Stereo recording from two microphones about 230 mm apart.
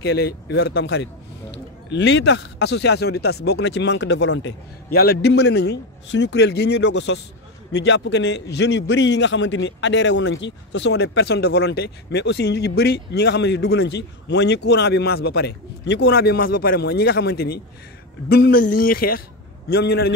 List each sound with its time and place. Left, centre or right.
0.0 s a man's voice: left